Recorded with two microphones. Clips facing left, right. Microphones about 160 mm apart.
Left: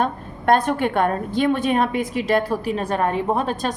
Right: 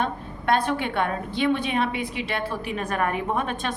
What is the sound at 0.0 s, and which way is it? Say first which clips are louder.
A woman's voice: left 5 dB; 45° left (ahead or behind).